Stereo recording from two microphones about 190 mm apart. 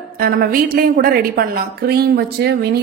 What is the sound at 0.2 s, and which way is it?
A woman's voice, 50° right (ahead or behind).